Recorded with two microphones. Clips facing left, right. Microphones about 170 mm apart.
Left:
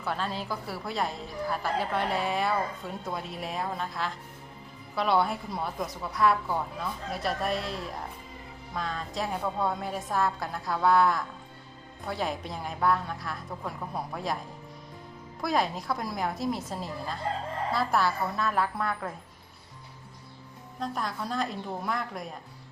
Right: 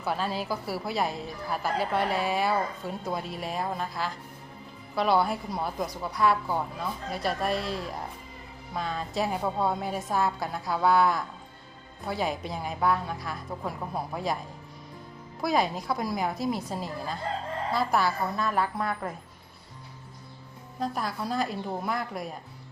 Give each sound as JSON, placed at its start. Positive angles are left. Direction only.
{"t": 0.0, "sound": "a woman's voice", "side_deg": -5}
{"t": 15.4, "sound": "a woman's voice", "side_deg": 0}
{"t": 20.7, "sound": "a woman's voice", "side_deg": -5}